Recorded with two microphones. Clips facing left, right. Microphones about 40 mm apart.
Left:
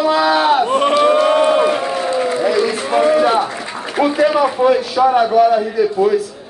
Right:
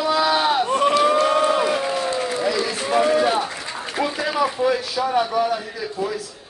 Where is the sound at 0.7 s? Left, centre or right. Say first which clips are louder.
Left 4 dB; left.